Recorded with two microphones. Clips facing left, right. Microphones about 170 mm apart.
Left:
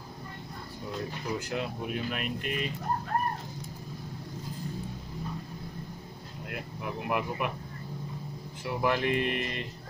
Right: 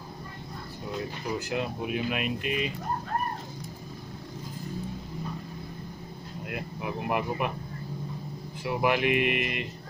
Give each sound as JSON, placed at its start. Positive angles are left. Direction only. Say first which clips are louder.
{"t": 1.5, "sound": "speech", "louder": "right 3 dB", "side_deg": -15}
{"t": 6.5, "sound": "speech", "louder": "right 3 dB", "side_deg": -20}
{"t": 8.6, "sound": "speech", "louder": "right 3 dB", "side_deg": -15}